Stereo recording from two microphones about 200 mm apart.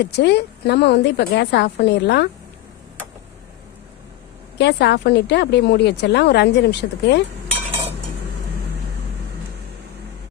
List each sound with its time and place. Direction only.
0.0 s speech: 55° left (ahead or behind)
4.5 s speech: 55° left (ahead or behind)
7.7 s a sound: 25° right (ahead or behind)